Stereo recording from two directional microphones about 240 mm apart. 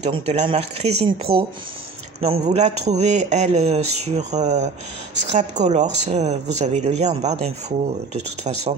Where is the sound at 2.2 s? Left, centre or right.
Right.